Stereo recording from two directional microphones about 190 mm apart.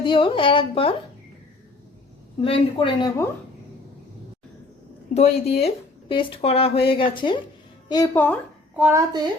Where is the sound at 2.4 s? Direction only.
30° left (ahead or behind).